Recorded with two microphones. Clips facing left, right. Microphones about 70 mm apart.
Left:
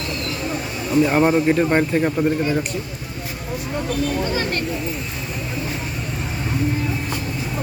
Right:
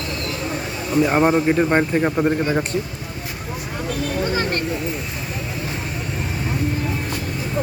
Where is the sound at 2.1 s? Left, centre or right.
Right.